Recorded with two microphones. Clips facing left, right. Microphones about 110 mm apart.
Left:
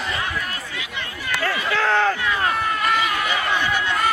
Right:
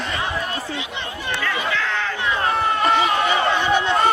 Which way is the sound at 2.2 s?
30° right (ahead or behind).